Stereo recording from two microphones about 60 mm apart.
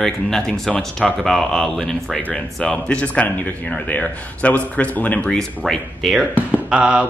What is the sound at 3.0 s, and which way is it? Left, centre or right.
A man's voice, left.